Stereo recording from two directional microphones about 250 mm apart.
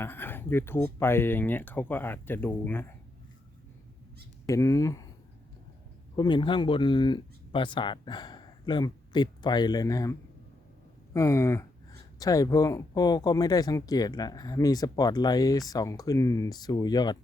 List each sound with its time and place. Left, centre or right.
0.0 s speech: centre
4.4 s speech: centre
6.1 s speech: centre